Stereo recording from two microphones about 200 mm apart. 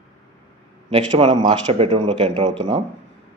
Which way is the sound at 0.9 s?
30° right (ahead or behind).